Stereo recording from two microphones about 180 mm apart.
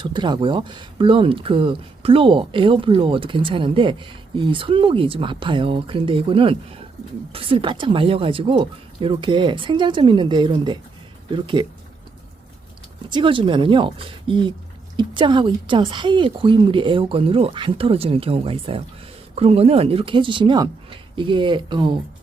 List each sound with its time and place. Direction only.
0.0 s speech: 25° right (ahead or behind)
13.1 s speech: 25° right (ahead or behind)